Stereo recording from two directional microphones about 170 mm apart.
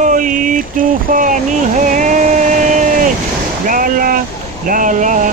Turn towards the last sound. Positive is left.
turn(degrees=-50)  # may be behind; listen again after turning